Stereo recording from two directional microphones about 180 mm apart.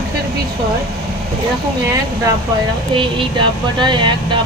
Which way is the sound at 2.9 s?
25° right (ahead or behind).